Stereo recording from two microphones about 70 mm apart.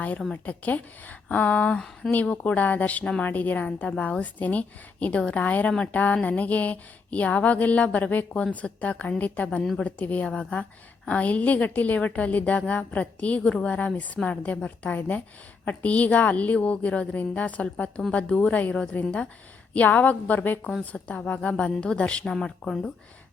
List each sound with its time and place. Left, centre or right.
0.4 s a woman's voice: left